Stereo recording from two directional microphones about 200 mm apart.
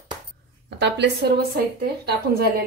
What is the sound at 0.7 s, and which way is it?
Speech, 60° right (ahead or behind).